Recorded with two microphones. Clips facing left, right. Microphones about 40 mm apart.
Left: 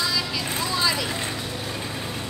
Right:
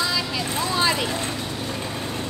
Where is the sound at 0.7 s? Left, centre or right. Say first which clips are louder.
Right 3 dB; right.